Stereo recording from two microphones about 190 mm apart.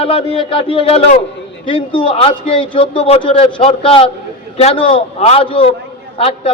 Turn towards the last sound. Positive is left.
turn(degrees=30)  # may be behind; listen again after turning